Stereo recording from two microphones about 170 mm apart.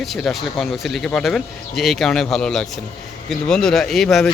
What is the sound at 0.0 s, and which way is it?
Speech, centre (ahead or behind).